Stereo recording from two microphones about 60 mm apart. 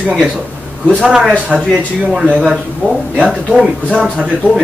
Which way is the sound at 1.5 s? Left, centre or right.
Centre.